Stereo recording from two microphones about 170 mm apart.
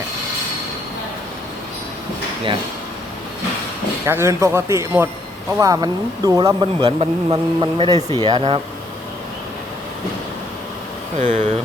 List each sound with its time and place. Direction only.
4.0 s speech: 15° right (ahead or behind)
11.2 s speech: 45° right (ahead or behind)